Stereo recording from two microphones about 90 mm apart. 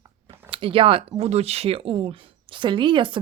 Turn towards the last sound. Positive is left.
turn(degrees=-70)  # may be behind; listen again after turning